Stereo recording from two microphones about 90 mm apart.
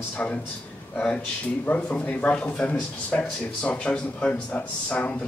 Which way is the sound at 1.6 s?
15° left (ahead or behind).